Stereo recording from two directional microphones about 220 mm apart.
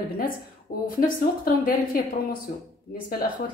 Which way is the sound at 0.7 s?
40° left (ahead or behind).